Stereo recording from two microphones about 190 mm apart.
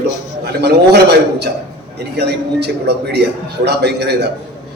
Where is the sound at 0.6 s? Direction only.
60° right (ahead or behind).